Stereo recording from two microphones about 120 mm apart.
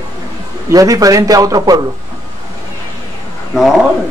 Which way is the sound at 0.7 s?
30° right (ahead or behind).